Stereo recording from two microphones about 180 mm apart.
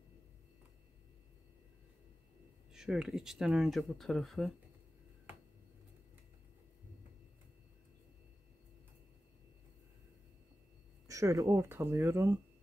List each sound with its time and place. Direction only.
2.7 s speech: 5° right (ahead or behind)
11.1 s speech: 15° right (ahead or behind)